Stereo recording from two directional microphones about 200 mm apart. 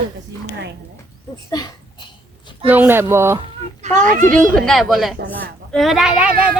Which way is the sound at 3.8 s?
40° right (ahead or behind).